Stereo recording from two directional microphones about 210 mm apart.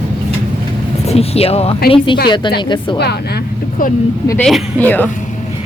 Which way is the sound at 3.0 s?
50° left (ahead or behind).